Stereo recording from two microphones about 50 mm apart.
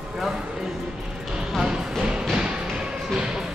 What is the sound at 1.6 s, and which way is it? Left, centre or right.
Basketball bounce, centre.